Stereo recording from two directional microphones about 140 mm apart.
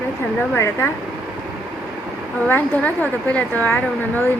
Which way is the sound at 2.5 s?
10° left (ahead or behind).